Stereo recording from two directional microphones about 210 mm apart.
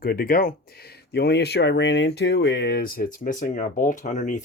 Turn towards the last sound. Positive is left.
turn(degrees=35)  # may be behind; listen again after turning